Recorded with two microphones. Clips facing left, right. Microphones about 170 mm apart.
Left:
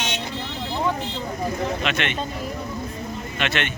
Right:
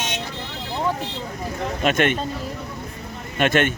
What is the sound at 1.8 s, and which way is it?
Speech, 45° right (ahead or behind).